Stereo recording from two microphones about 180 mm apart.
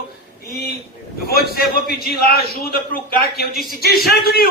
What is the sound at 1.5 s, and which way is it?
A man's voice, 55° left (ahead or behind).